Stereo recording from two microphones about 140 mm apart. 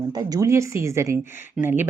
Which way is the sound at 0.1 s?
25° right (ahead or behind).